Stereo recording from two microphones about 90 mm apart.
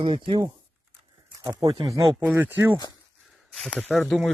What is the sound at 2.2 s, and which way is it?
Speech, 20° right (ahead or behind).